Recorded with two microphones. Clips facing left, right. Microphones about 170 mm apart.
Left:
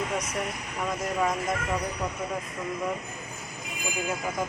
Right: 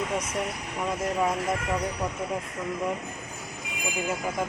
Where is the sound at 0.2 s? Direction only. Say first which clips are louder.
Right 1 dB; 5° right (ahead or behind).